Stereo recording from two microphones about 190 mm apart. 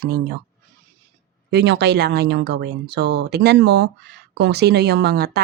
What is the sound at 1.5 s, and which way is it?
A woman's voice, 65° right (ahead or behind).